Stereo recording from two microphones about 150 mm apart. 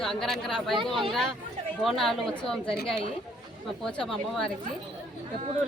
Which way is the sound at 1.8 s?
Centre (ahead or behind).